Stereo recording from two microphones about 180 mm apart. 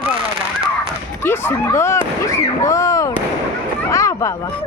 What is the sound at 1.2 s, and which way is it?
Speech, 15° left (ahead or behind).